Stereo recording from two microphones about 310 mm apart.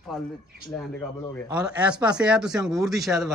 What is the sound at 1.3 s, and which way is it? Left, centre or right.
Speech, centre.